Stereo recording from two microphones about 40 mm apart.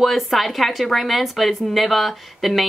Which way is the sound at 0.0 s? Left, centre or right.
Centre.